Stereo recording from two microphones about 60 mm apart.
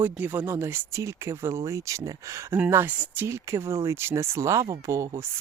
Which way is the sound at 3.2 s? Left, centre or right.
Right.